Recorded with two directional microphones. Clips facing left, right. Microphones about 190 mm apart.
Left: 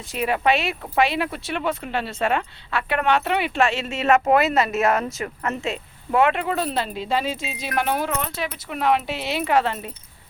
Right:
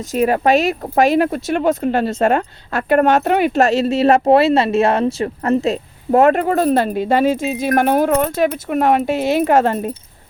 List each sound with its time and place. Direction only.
0.1 s speech: 45° right (ahead or behind)